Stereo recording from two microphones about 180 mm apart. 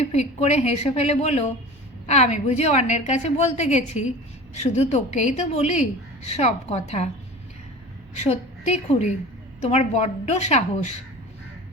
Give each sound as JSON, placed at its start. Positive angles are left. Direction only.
{"t": 0.0, "sound": "a woman's voice", "side_deg": 35}
{"t": 8.2, "sound": "a woman's voice", "side_deg": 35}